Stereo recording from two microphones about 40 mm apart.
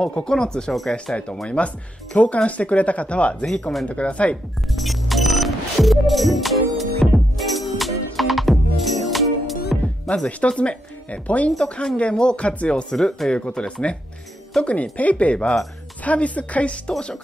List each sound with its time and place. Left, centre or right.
0.0 s speech: left
1.6 s speech: left
4.6 s music: centre
10.0 s speech: left
12.0 s speech: left
12.9 s speech: centre
13.3 s speech: left